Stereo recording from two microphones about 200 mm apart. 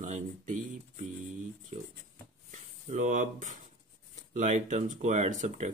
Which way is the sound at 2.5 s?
40° right (ahead or behind).